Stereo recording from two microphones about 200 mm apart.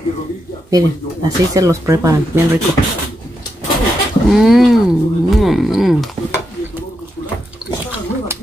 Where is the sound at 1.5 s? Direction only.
15° right (ahead or behind).